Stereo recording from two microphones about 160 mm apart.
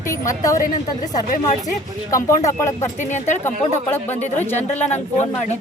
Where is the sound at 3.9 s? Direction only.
10° left (ahead or behind).